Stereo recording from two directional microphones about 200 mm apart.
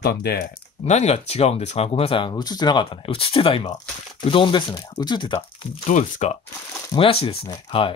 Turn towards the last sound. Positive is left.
turn(degrees=25)  # may be behind; listen again after turning